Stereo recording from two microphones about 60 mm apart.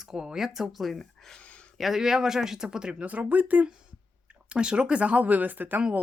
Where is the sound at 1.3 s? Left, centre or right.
Left.